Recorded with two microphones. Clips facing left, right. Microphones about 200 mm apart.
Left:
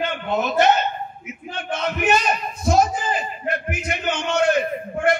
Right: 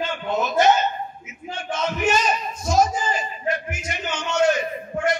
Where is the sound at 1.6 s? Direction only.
60° left (ahead or behind).